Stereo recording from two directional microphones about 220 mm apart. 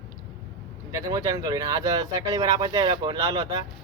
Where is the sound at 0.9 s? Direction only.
15° right (ahead or behind).